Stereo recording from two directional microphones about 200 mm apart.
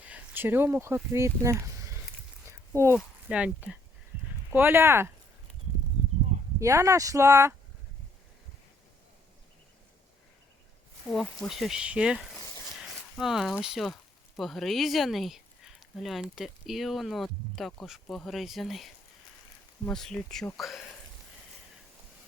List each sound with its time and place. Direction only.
0.0 s speech: 10° right (ahead or behind)
2.0 s a sound: 10° right (ahead or behind)
3.2 s speech: 5° right (ahead or behind)
6.6 s speech: 15° right (ahead or behind)
11.1 s speech: centre (ahead or behind)